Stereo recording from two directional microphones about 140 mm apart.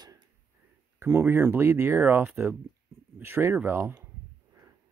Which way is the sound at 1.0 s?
15° right (ahead or behind).